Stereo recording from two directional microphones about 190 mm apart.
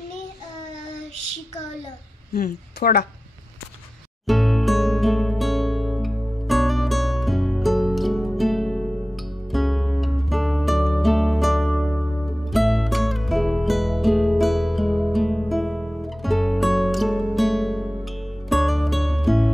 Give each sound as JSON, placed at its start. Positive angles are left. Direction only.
{"t": 2.3, "sound": "speech", "side_deg": 55}
{"t": 4.3, "sound": "music", "side_deg": 0}